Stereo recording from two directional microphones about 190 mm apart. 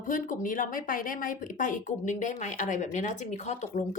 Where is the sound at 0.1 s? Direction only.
45° left (ahead or behind).